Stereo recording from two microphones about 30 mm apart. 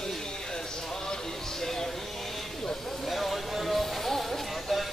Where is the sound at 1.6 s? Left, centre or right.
Centre.